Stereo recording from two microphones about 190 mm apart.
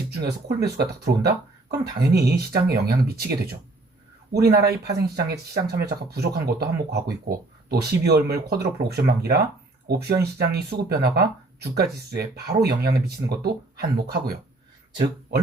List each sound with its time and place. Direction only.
0.2 s speech: 60° right (ahead or behind)